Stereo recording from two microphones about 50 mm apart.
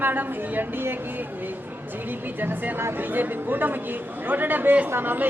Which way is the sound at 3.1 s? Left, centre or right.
Right.